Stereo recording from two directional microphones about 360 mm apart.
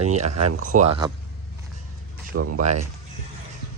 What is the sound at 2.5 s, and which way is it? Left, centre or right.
Speech, centre.